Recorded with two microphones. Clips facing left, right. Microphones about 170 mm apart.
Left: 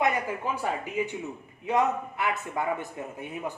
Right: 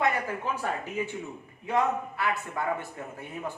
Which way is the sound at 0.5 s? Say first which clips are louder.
Left 2 dB; 15° left (ahead or behind).